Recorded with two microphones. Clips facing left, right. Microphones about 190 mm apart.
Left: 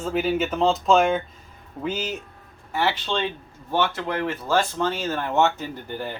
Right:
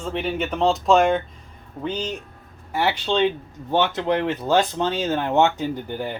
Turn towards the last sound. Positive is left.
turn(degrees=-15)  # may be behind; listen again after turning